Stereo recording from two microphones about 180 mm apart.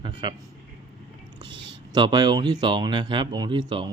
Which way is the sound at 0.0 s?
25° right (ahead or behind).